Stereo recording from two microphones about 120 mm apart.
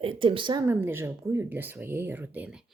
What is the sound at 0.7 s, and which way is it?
Speech, 20° right (ahead or behind).